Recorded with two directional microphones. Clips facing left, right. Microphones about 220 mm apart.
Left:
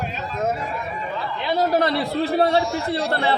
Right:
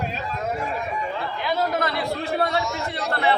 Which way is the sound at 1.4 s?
30° left (ahead or behind).